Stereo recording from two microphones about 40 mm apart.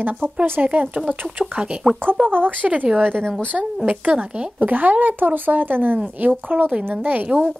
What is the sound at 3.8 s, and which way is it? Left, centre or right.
Speech, right.